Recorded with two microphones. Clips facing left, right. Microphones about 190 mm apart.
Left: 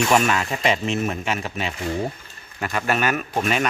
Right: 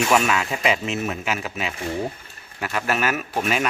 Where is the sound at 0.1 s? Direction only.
Centre (ahead or behind).